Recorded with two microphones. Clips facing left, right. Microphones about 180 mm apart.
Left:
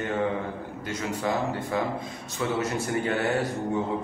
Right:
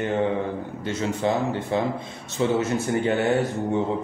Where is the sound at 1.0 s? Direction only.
25° right (ahead or behind).